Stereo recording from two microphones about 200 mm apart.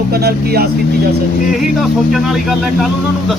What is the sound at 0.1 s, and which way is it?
Speech, 50° right (ahead or behind).